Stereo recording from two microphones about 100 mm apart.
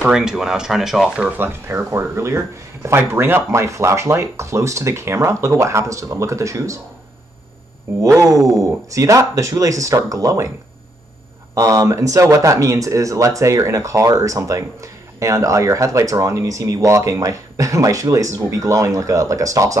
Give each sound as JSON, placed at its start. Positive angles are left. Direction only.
{"t": 0.0, "sound": "speech", "side_deg": -5}
{"t": 1.4, "sound": "speech", "side_deg": -25}
{"t": 8.0, "sound": "speech", "side_deg": -35}
{"t": 11.5, "sound": "speech", "side_deg": -35}